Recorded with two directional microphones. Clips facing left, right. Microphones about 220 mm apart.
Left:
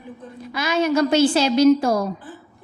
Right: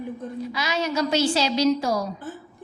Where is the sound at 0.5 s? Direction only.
50° left (ahead or behind).